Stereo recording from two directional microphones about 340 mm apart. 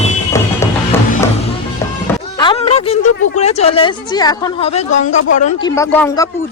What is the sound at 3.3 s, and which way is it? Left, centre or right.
A woman's voice, centre.